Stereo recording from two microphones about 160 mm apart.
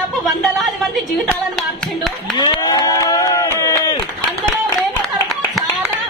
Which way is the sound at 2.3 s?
25° left (ahead or behind).